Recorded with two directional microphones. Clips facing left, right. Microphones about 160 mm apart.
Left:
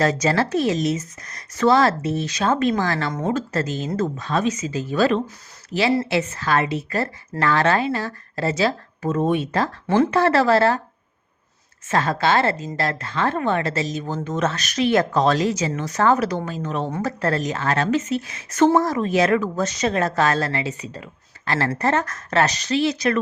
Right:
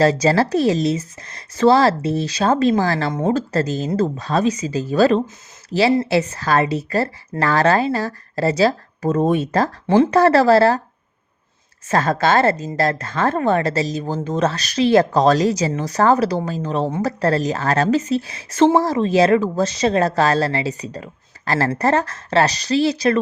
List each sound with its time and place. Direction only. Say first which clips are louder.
0.0 s speech: right 4 dB; 30° right (ahead or behind)
9.8 s speech: right 4 dB; 25° right (ahead or behind)
10.1 s speech: right 6 dB; 40° right (ahead or behind)
11.9 s speech: right 3 dB; 40° right (ahead or behind)